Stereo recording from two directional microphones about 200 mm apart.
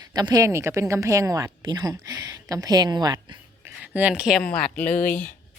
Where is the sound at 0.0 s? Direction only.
20° right (ahead or behind).